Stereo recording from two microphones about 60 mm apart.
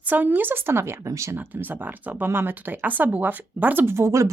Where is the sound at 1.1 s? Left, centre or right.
Right.